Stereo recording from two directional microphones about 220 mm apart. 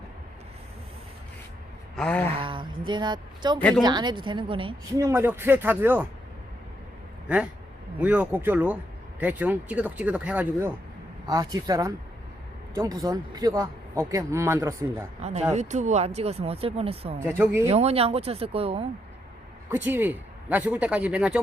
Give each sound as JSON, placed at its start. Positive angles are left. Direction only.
{"t": 2.0, "sound": "a sound", "side_deg": 5}
{"t": 2.3, "sound": "speech", "side_deg": -20}
{"t": 3.6, "sound": "speech", "side_deg": 5}
{"t": 3.8, "sound": "speech", "side_deg": -20}
{"t": 7.9, "sound": "speech", "side_deg": -5}
{"t": 15.2, "sound": "speech", "side_deg": -30}
{"t": 17.2, "sound": "speech", "side_deg": -10}
{"t": 17.7, "sound": "speech", "side_deg": -30}
{"t": 19.7, "sound": "speech", "side_deg": -10}